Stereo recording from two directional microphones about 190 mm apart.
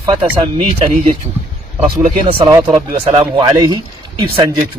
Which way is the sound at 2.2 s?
20° right (ahead or behind).